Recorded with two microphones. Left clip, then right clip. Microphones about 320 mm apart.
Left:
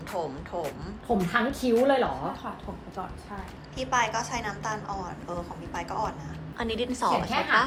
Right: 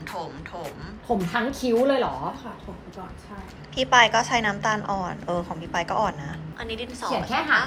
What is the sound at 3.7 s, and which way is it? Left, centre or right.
A woman's voice, centre.